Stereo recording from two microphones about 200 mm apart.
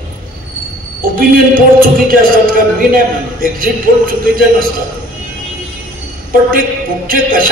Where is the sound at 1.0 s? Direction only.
45° right (ahead or behind).